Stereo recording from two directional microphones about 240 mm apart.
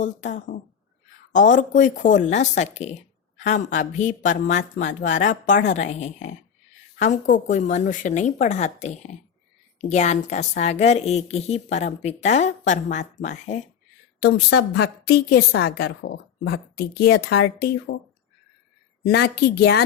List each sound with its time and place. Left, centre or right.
0.0 s a woman's voice: left
14.2 s a woman's voice: left
19.0 s a woman's voice: left